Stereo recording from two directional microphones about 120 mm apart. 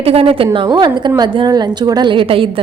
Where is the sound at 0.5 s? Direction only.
40° right (ahead or behind).